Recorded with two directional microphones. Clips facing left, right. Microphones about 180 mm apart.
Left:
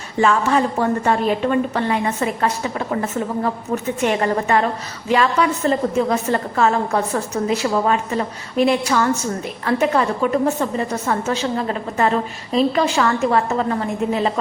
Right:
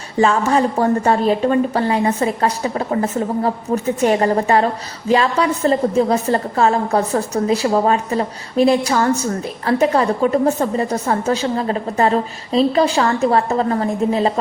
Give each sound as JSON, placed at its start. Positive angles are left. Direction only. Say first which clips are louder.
{"t": 0.2, "sound": "a woman's voice", "louder": "right 2 dB", "side_deg": -35}